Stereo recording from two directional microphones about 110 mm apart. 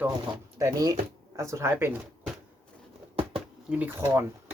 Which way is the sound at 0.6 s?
30° right (ahead or behind).